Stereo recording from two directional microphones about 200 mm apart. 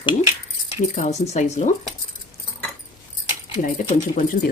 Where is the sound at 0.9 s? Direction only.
35° left (ahead or behind).